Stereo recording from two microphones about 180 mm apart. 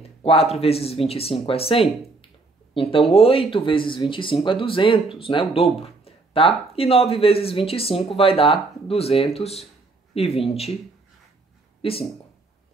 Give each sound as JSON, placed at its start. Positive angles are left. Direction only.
{"t": 0.0, "sound": "speech", "side_deg": 35}
{"t": 11.8, "sound": "speech", "side_deg": 30}